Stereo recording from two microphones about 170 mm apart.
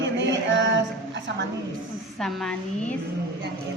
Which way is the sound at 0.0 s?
90° right.